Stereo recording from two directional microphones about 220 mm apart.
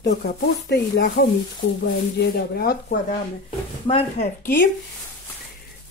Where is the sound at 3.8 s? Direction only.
25° left (ahead or behind).